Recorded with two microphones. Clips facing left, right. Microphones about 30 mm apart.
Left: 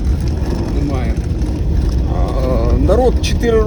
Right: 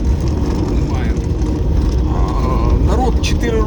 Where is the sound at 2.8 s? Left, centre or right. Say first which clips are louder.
Left 7 dB; left.